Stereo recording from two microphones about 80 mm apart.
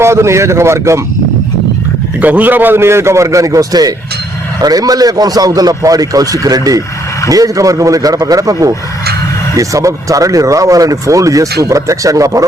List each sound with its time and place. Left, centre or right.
0.0 s a man's voice: right
2.2 s a man's voice: right